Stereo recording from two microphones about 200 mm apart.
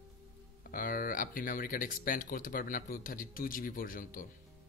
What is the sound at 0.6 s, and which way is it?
Speech, 45° left (ahead or behind).